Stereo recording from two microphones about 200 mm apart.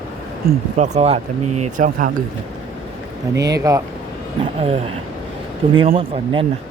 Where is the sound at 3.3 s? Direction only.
15° right (ahead or behind).